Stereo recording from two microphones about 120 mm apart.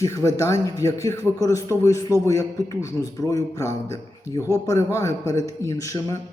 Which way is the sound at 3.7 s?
60° right (ahead or behind).